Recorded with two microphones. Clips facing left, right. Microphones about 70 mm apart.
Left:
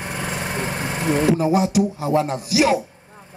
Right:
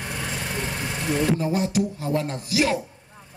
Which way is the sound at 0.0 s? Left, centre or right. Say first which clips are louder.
Left 4 dB; left.